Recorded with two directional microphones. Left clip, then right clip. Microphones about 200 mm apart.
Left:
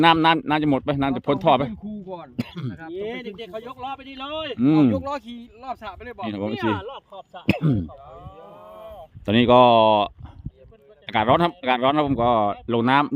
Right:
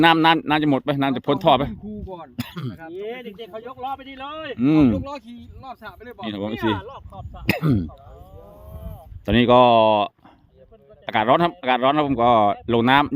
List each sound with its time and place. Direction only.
0.0 s a man's voice: 5° right (ahead or behind)
2.0 s speech: 50° left (ahead or behind)
2.3 s speech: 15° right (ahead or behind)
2.8 s speech: 55° left (ahead or behind)
4.5 s a man's voice: 5° right (ahead or behind)
4.9 s speech: 35° left (ahead or behind)
6.2 s a man's voice: 10° right (ahead or behind)
6.7 s speech: 35° left (ahead or behind)
7.4 s speech: 20° right (ahead or behind)
9.2 s a man's voice: 5° right (ahead or behind)